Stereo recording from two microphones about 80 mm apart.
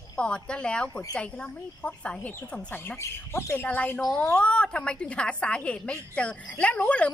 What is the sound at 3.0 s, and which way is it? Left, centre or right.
Speech, left.